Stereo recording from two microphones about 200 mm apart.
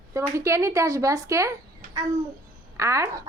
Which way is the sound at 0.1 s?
15° right (ahead or behind).